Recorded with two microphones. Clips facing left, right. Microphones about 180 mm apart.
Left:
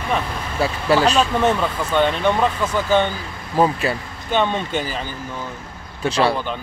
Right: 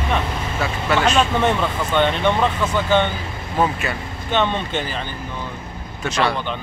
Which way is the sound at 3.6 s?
30° left (ahead or behind).